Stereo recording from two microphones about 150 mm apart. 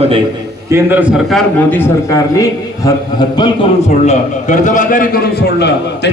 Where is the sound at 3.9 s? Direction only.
50° left (ahead or behind); by 5.7 s 90° left.